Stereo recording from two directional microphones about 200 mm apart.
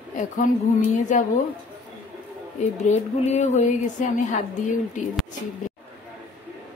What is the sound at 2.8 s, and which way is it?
Speech, 35° left (ahead or behind).